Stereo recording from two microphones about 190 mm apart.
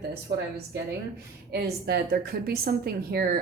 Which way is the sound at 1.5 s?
55° right (ahead or behind).